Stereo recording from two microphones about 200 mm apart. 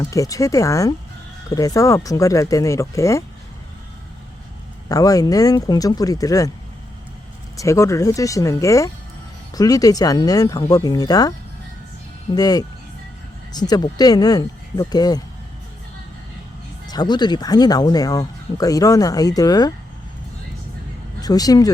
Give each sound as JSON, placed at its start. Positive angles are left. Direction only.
{"t": 0.1, "sound": "speech", "side_deg": 15}
{"t": 4.9, "sound": "speech", "side_deg": 15}
{"t": 7.5, "sound": "speech", "side_deg": 15}
{"t": 16.8, "sound": "speech", "side_deg": 20}
{"t": 21.2, "sound": "speech", "side_deg": 20}